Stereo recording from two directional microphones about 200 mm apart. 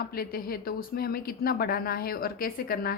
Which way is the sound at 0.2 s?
50° left (ahead or behind).